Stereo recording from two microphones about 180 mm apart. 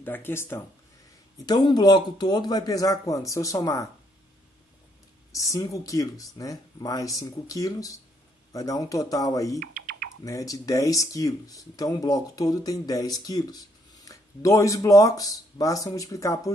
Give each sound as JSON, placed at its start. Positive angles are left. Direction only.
{"t": 0.0, "sound": "speech", "side_deg": 10}
{"t": 5.3, "sound": "speech", "side_deg": 20}
{"t": 9.6, "sound": "typing", "side_deg": -50}
{"t": 10.2, "sound": "speech", "side_deg": 20}